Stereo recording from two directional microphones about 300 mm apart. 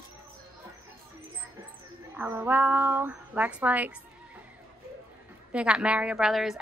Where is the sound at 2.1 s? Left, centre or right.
Centre.